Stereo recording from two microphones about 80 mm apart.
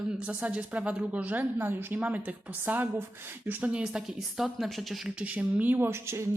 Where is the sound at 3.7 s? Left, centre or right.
Centre.